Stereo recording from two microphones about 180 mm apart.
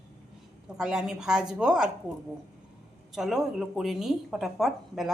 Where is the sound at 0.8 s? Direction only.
5° right (ahead or behind).